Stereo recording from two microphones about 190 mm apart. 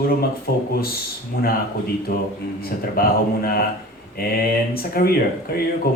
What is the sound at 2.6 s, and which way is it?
Speech, 50° left (ahead or behind).